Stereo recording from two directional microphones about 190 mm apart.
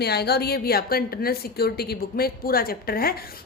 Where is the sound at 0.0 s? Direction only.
55° left (ahead or behind).